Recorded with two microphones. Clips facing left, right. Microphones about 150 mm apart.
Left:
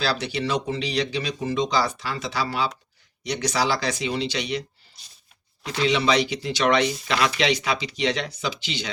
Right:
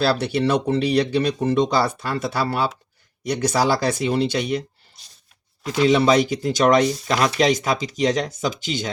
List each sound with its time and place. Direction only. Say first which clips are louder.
0.0 s speech: right 6 dB; 55° right (ahead or behind)
5.9 s speech: right 5 dB; 45° right (ahead or behind)